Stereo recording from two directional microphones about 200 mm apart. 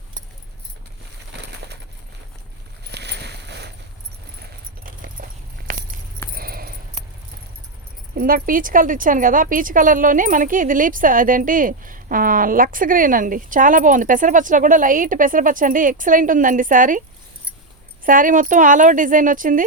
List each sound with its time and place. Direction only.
1.3 s a sound: 55° right (ahead or behind)
2.8 s a sound: 55° right (ahead or behind)
4.8 s keys jangling: 45° right (ahead or behind)
6.3 s keys jangling: 45° right (ahead or behind)
8.1 s speech: 45° right (ahead or behind)
18.0 s speech: 40° right (ahead or behind)